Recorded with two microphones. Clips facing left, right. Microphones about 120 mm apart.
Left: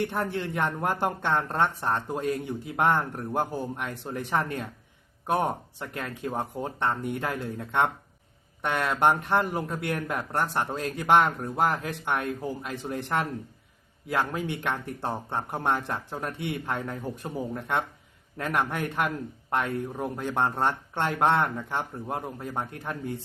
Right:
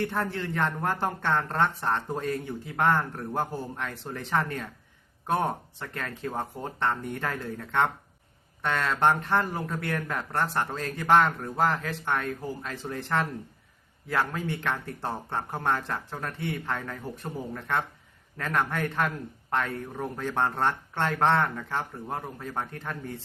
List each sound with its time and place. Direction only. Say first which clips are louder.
0.0 s speech: left 1 dB; 15° left (ahead or behind)